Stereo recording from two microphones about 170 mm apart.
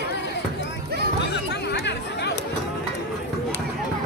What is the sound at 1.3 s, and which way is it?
Chatter, 80° left.